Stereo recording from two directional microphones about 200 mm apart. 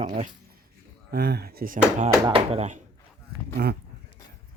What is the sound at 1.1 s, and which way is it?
Speech, 55° right (ahead or behind).